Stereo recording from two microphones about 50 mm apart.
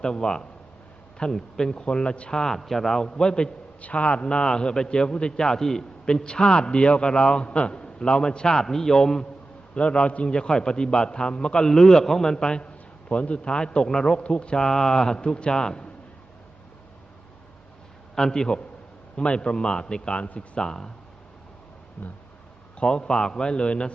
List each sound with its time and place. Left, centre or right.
0.0 s a man's voice: centre
2.4 s a man's voice: centre
9.7 s a man's voice: left
14.2 s a man's voice: left
18.1 s a man's voice: centre
20.7 s a man's voice: centre
22.0 s speech: left
22.8 s a man's voice: centre